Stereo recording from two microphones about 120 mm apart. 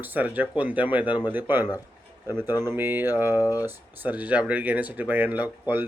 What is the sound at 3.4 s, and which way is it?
Speech, 30° left (ahead or behind).